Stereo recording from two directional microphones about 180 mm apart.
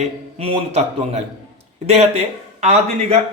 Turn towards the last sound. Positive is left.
turn(degrees=-35)  # may be behind; listen again after turning